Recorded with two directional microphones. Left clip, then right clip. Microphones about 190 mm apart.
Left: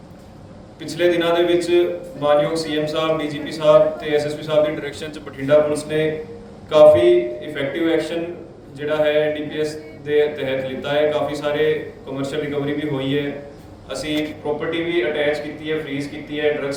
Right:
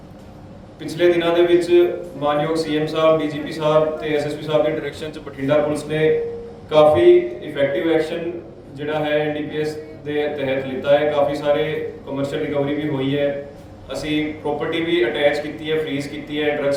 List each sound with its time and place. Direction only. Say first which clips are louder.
0.8 s a man's voice: right 1 dB; 10° right (ahead or behind)